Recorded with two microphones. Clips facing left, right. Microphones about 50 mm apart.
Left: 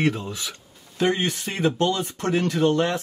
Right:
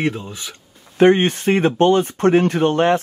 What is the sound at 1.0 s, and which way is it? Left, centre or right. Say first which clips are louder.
Speech: right 10 dB; right.